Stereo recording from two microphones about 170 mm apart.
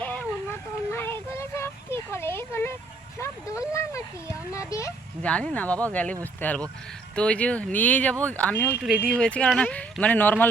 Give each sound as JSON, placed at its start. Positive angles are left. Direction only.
{"t": 0.0, "sound": "a sound", "side_deg": 10}
{"t": 5.2, "sound": "speech", "side_deg": 5}
{"t": 8.7, "sound": "speech", "side_deg": -5}